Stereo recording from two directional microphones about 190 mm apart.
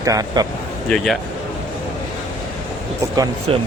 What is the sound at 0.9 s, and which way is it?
Speech, centre (ahead or behind).